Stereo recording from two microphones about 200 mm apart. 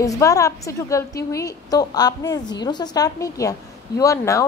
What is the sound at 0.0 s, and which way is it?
A woman's voice, 15° left (ahead or behind).